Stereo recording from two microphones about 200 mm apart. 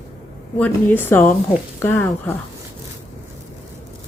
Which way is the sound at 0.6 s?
10° left (ahead or behind).